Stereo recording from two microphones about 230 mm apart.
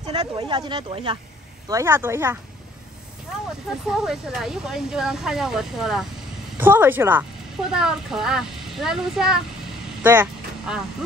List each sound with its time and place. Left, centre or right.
0.0 s speech: centre
3.4 s speech: centre